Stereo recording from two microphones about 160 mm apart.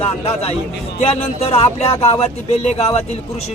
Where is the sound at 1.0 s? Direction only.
40° left (ahead or behind).